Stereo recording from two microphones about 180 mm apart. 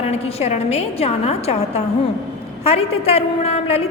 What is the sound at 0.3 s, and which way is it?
A woman's voice, 35° left (ahead or behind).